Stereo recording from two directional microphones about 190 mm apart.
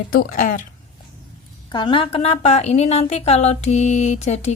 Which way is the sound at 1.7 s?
25° left (ahead or behind).